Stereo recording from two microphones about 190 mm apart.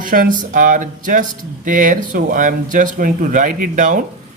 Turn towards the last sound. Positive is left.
turn(degrees=-45)  # may be behind; listen again after turning